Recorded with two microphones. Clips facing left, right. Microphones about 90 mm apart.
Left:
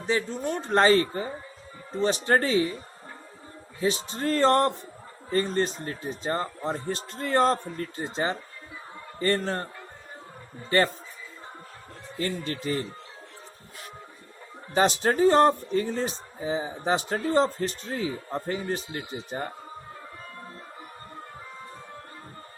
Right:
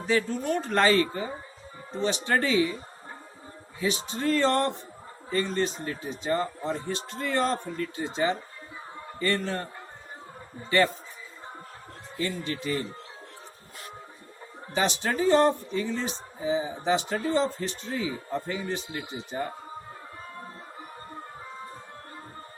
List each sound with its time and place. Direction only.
0.1 s speech: 30° left (ahead or behind)
3.8 s speech: 35° left (ahead or behind)
10.7 s speech: 35° left (ahead or behind)
12.2 s speech: 40° left (ahead or behind)
14.7 s speech: 40° left (ahead or behind)